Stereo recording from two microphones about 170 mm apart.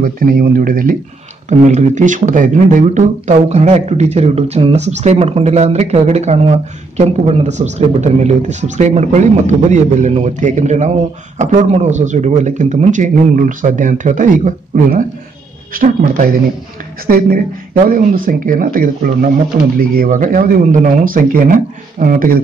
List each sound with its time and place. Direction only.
0.0 s speech: 60° right (ahead or behind)
1.5 s speech: 45° right (ahead or behind)